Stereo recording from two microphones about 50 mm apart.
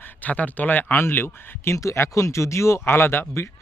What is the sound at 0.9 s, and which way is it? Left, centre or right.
Speech, left.